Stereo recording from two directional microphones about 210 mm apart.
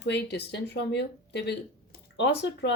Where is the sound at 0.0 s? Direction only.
55° left (ahead or behind).